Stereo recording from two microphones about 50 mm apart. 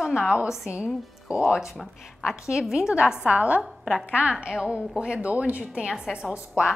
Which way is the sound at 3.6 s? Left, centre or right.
Centre.